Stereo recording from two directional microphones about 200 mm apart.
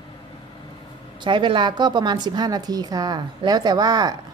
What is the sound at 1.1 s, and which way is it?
A woman's voice, 25° right (ahead or behind).